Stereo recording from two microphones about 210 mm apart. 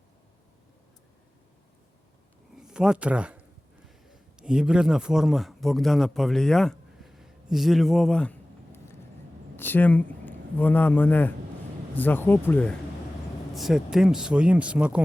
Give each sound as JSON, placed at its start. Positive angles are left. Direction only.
{"t": 2.6, "sound": "a man's voice", "side_deg": -5}